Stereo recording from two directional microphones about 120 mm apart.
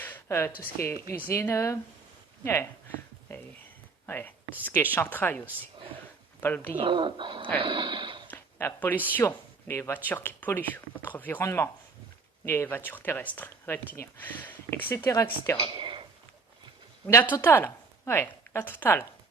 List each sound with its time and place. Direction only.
0.0 s speech: 20° left (ahead or behind)
3.3 s a sound: 25° left (ahead or behind)
4.0 s speech: 15° left (ahead or behind)
6.4 s speech: 15° left (ahead or behind)
6.7 s speech: 45° right (ahead or behind)
8.3 s a sound: 15° left (ahead or behind)
9.0 s speech: 20° left (ahead or behind)
15.8 s a sound: 40° right (ahead or behind)
17.1 s speech: 25° left (ahead or behind)